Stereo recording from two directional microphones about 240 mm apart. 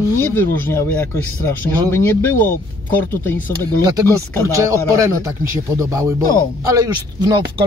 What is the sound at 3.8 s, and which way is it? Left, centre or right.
Speech, centre.